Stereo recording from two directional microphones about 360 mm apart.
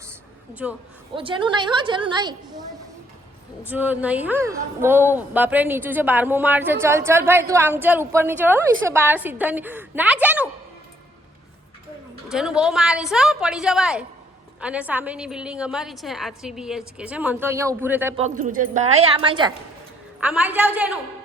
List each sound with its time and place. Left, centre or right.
0.6 s a woman's voice: centre
1.1 s a woman's voice: centre
3.7 s a woman's voice: centre
12.3 s a woman's voice: centre
18.2 s a woman's voice: right; by 21.0 s centre